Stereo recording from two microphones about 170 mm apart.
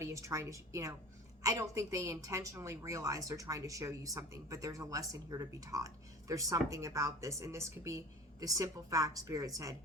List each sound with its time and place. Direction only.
0.0 s a woman's voice: 15° right (ahead or behind)